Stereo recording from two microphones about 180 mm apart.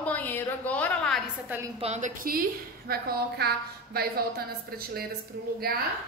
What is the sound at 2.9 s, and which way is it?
A woman's voice, 60° right (ahead or behind).